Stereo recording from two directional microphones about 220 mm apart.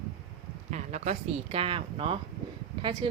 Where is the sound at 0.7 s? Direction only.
30° right (ahead or behind).